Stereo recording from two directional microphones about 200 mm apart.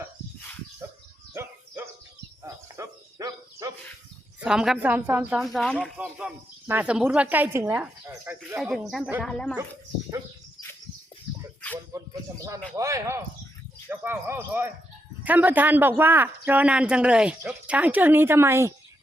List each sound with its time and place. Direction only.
1.3 s dog: 15° right (ahead or behind)
2.4 s cricket: 15° right (ahead or behind)
4.4 s speech: 5° right (ahead or behind)
9.2 s speech: 5° left (ahead or behind)
11.9 s music: 15° right (ahead or behind)
12.7 s speech: 15° right (ahead or behind)